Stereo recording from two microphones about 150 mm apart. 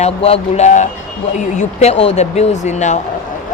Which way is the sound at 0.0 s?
45° left (ahead or behind).